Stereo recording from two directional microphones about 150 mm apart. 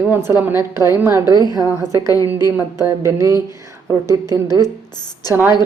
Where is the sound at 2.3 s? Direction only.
15° right (ahead or behind).